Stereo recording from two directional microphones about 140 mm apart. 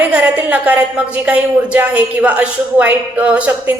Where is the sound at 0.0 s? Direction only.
10° right (ahead or behind).